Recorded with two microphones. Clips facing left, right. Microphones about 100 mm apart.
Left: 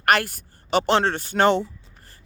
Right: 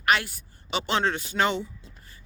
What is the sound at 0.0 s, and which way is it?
A woman's voice, 60° left (ahead or behind).